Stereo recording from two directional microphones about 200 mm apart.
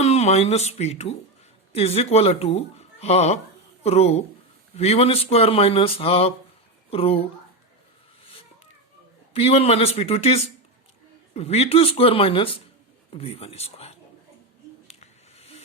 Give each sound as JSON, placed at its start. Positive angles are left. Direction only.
{"t": 0.0, "sound": "speech", "side_deg": 35}
{"t": 9.3, "sound": "speech", "side_deg": 30}
{"t": 14.8, "sound": "a sound", "side_deg": 30}